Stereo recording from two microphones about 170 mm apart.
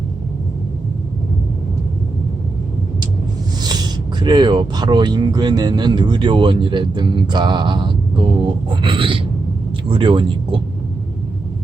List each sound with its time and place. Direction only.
3.6 s speech: 25° right (ahead or behind)